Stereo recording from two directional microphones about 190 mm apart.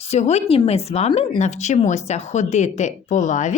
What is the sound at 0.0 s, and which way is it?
Speech, 35° left (ahead or behind).